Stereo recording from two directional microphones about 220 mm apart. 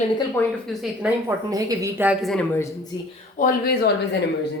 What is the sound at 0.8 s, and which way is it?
Speech, 5° right (ahead or behind).